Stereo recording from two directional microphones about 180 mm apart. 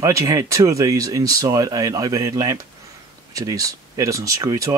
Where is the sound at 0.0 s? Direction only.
20° right (ahead or behind).